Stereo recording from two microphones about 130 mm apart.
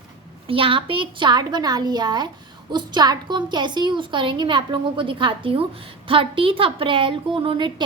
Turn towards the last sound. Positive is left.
turn(degrees=-40)  # may be behind; listen again after turning